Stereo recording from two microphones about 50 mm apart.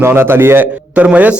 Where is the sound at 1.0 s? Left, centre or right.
Right.